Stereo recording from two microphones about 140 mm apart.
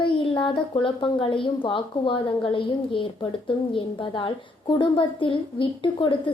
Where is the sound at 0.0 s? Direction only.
35° left (ahead or behind).